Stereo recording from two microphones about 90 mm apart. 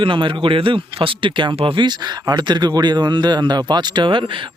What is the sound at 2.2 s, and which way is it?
A man's voice, 55° right (ahead or behind).